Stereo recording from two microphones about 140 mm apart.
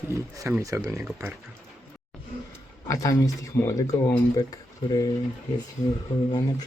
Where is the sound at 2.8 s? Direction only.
25° left (ahead or behind).